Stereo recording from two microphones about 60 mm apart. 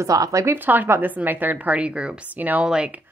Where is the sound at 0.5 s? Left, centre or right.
Right.